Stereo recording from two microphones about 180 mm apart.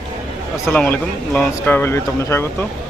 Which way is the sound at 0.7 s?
5° left (ahead or behind).